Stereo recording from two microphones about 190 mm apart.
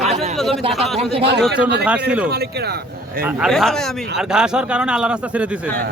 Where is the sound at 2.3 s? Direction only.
55° right (ahead or behind).